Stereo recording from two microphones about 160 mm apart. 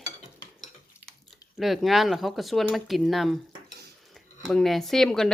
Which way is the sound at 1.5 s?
Centre (ahead or behind).